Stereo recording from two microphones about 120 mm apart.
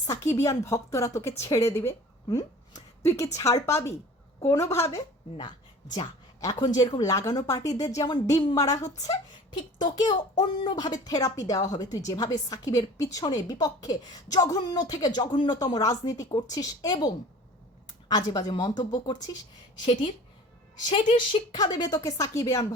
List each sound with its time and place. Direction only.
0.1 s a woman's voice: 25° left (ahead or behind)
2.3 s a sound: 25° left (ahead or behind)
3.3 s a woman's voice: 25° left (ahead or behind)
5.4 s a sound: 40° left (ahead or behind)
6.4 s a woman's voice: 30° left (ahead or behind)
18.1 s a woman's voice: 35° left (ahead or behind)
21.2 s a woman's voice: 35° left (ahead or behind)